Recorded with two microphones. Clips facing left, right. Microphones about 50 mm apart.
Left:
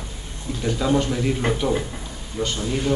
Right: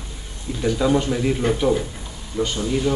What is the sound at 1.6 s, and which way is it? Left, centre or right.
A man's voice, centre.